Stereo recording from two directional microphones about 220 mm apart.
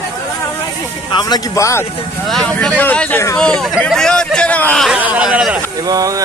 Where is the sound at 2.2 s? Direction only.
5° left (ahead or behind).